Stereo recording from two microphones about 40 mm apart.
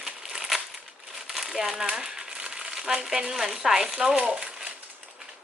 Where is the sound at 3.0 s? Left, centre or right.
Centre.